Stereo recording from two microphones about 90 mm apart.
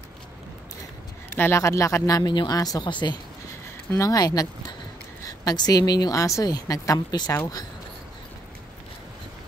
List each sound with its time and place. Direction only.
1.3 s speech: 25° left (ahead or behind)
1.6 s speech: 35° left (ahead or behind); by 3.2 s 55° left (ahead or behind)
3.9 s a woman's voice: 40° left (ahead or behind)